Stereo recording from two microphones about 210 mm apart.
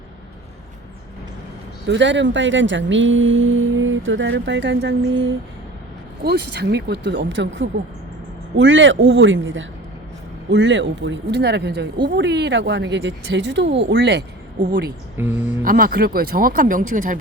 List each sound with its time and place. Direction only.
1.9 s speech: 60° right (ahead or behind)
6.2 s speech: 50° right (ahead or behind)
14.6 s speech: 45° right (ahead or behind)
15.2 s a sound: 10° right (ahead or behind)
15.6 s speech: 45° right (ahead or behind)